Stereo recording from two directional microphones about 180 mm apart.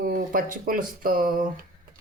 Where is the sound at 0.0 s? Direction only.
50° right (ahead or behind).